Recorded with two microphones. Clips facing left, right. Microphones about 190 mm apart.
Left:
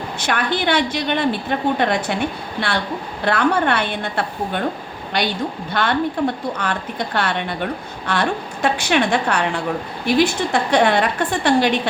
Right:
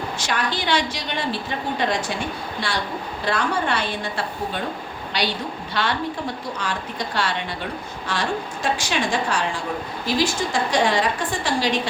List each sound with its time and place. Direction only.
0.2 s a woman's voice: 60° left (ahead or behind)
3.2 s a woman's voice: 60° left (ahead or behind)